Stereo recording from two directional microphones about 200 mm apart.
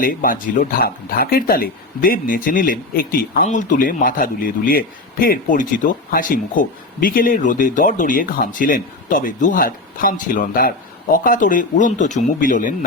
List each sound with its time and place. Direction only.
0.0 s speech: 45° left (ahead or behind)